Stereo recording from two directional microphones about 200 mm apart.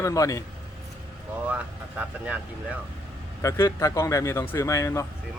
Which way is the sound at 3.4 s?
15° left (ahead or behind).